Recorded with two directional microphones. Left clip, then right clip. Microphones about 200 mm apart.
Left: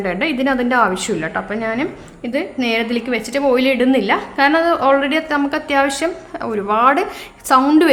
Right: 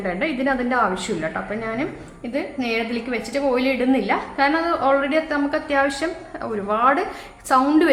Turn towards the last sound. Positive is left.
turn(degrees=45)  # may be behind; listen again after turning